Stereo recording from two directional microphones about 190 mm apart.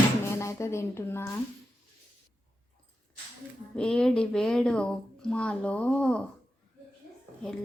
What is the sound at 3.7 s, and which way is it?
Speech, 5° left (ahead or behind).